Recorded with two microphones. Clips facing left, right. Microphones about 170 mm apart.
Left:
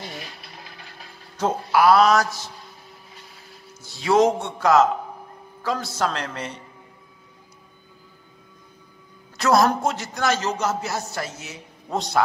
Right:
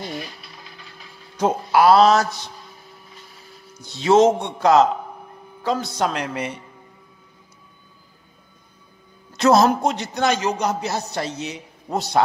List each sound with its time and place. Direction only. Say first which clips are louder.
1.7 s music: right 2 dB; 25° right (ahead or behind)
3.8 s music: right 3 dB; 20° right (ahead or behind)
5.6 s a man's voice: right 3 dB; 20° right (ahead or behind)
9.4 s music: right 3 dB; 20° right (ahead or behind)
11.9 s speech: right 2 dB; centre (ahead or behind)